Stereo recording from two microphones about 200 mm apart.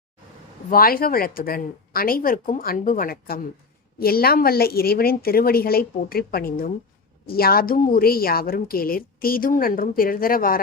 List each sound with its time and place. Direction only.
0.7 s a woman's voice: 45° left (ahead or behind)